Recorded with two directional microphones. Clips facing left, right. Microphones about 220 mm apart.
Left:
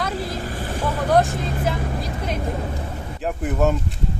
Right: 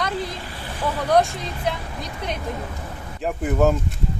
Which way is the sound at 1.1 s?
Centre (ahead or behind).